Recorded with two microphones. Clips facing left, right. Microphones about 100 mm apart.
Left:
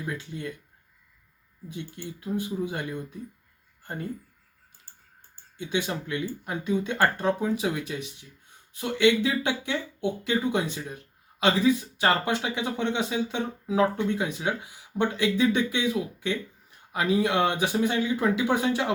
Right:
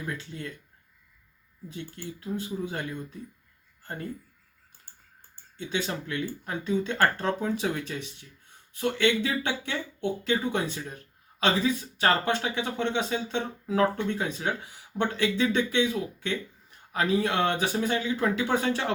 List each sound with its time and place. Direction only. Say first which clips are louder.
0.0 s speech: left 2 dB; 15° left (ahead or behind)
1.6 s speech: left 1 dB; 15° left (ahead or behind)
5.5 s speech: left 2 dB; 15° left (ahead or behind)